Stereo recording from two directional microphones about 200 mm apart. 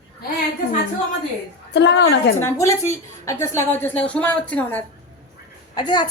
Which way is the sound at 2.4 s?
15° left (ahead or behind).